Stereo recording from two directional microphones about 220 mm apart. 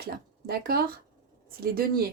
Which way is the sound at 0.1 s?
45° right (ahead or behind).